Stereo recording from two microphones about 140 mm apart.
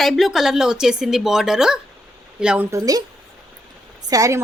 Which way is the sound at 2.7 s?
25° right (ahead or behind).